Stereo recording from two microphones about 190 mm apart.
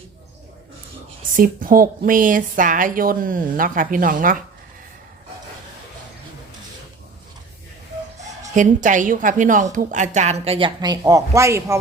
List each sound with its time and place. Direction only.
1.4 s speech: 50° right (ahead or behind)
8.5 s a woman's voice: 40° right (ahead or behind); by 11.8 s 15° right (ahead or behind)